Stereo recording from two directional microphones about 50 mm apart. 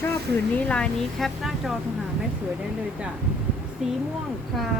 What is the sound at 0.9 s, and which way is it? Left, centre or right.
Speech, centre.